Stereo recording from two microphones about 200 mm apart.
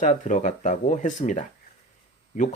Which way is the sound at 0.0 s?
40° left (ahead or behind).